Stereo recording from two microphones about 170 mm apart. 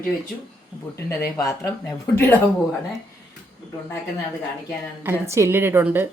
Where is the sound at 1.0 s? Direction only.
15° left (ahead or behind).